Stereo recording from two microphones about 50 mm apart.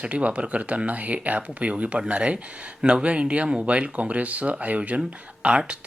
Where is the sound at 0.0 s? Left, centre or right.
Right.